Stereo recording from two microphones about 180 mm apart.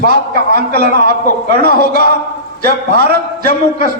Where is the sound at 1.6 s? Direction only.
50° left (ahead or behind).